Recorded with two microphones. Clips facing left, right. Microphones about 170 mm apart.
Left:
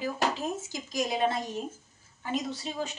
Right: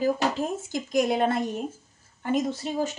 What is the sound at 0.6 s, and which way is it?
A woman's voice, 55° right (ahead or behind).